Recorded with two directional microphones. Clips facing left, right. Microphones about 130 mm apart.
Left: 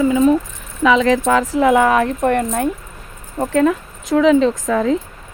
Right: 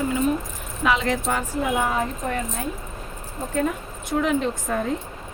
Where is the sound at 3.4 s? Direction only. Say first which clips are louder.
Left 9 dB; 90° left.